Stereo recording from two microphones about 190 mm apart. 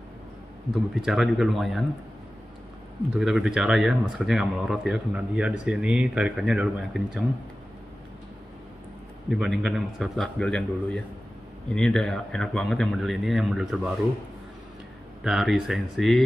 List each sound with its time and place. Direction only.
0.9 s speech: centre (ahead or behind)
3.2 s speech: centre (ahead or behind)
9.3 s speech: centre (ahead or behind)
15.2 s speech: centre (ahead or behind)